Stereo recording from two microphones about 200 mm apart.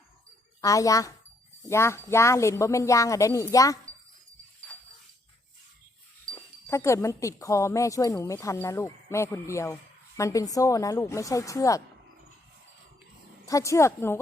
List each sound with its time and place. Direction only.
0.6 s speech: 15° left (ahead or behind)
6.2 s speech: 10° left (ahead or behind)
13.5 s speech: 15° left (ahead or behind)